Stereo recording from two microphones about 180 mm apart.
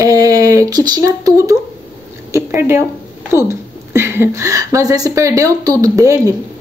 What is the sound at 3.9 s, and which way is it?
Speech, 15° right (ahead or behind).